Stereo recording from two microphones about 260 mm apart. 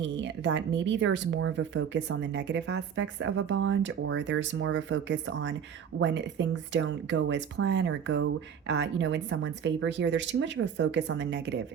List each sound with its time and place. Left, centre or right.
0.0 s speech: right